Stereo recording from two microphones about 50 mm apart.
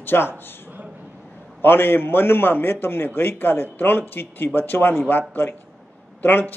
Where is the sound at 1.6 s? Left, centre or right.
Left.